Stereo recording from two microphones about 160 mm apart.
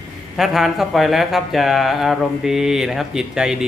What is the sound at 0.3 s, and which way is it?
A man's voice, centre (ahead or behind).